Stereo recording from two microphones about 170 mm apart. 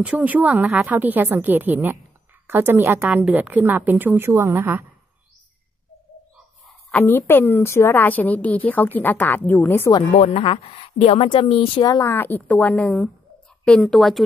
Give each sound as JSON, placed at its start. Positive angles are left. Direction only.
{"t": 0.0, "sound": "a woman's voice", "side_deg": -10}
{"t": 6.9, "sound": "a woman's voice", "side_deg": 15}
{"t": 11.8, "sound": "a woman's voice", "side_deg": 20}